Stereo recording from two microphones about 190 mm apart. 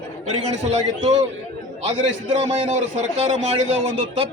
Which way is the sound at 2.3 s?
30° right (ahead or behind).